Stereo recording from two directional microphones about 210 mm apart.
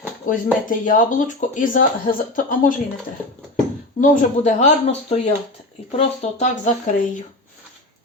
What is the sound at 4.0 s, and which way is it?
Speech, 35° left (ahead or behind).